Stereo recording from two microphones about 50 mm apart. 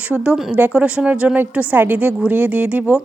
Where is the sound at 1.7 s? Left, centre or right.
Right.